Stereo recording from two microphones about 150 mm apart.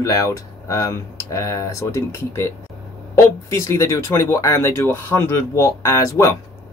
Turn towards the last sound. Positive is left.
turn(degrees=20)  # may be behind; listen again after turning